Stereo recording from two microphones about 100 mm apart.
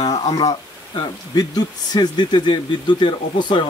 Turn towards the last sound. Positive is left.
turn(degrees=50)  # may be behind; listen again after turning